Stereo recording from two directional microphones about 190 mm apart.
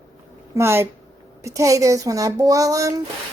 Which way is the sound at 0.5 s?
15° right (ahead or behind).